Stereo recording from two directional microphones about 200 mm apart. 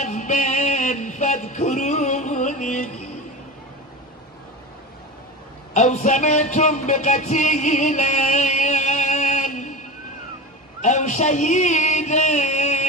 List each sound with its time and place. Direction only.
0.0 s music: 35° left (ahead or behind)
5.7 s speech: 35° left (ahead or behind)
10.8 s speech: 35° left (ahead or behind)